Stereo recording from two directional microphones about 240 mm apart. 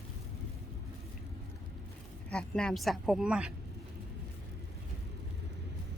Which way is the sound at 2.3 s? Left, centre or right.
Centre.